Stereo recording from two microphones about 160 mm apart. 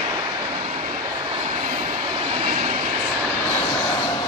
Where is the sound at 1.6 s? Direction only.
45° right (ahead or behind).